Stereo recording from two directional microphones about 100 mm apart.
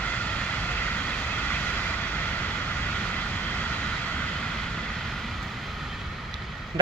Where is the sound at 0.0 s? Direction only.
15° left (ahead or behind); by 6.2 s centre (ahead or behind).